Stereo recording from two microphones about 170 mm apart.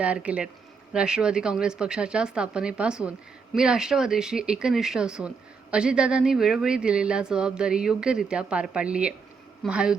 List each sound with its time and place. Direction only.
0.0 s speech: 5° right (ahead or behind)